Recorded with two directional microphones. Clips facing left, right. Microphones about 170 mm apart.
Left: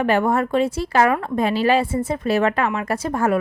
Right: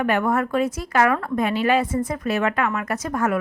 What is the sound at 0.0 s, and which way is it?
Speech, 30° left (ahead or behind).